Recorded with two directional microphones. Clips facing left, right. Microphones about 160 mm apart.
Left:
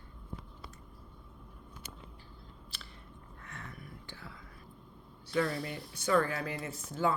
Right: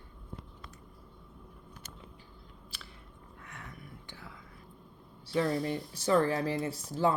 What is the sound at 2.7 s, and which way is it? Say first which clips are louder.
Chewing: right 1 dB; 10° right (ahead or behind).